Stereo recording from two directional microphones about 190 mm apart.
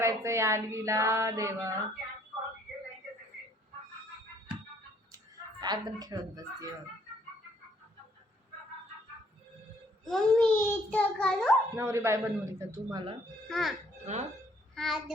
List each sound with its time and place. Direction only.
0.0 s a sound: 15° right (ahead or behind)
5.1 s speech: 20° right (ahead or behind)
10.0 s a child's voice: 5° left (ahead or behind)
11.8 s a sound: 15° right (ahead or behind)
13.5 s a child's voice: centre (ahead or behind)
14.0 s speech: 35° right (ahead or behind)
14.8 s a child's voice: centre (ahead or behind)